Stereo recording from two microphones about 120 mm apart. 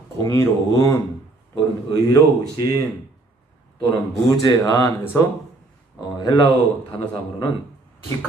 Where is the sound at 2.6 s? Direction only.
35° left (ahead or behind).